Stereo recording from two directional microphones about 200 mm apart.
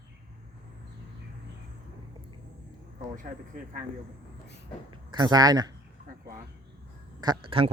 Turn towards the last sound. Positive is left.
turn(degrees=-25)  # may be behind; listen again after turning